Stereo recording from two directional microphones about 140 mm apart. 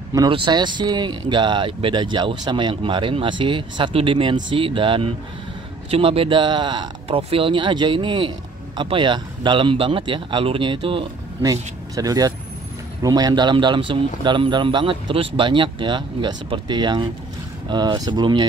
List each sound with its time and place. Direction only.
0.1 s speech: 30° right (ahead or behind)
11.4 s speech: 25° right (ahead or behind)